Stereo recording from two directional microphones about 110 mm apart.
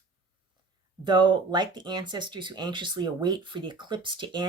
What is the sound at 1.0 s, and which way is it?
Speech, 45° right (ahead or behind).